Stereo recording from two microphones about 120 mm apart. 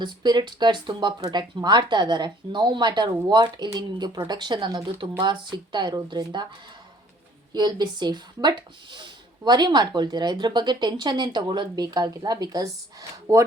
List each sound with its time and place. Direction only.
0.0 s speech: 40° right (ahead or behind)
7.5 s speech: 35° right (ahead or behind)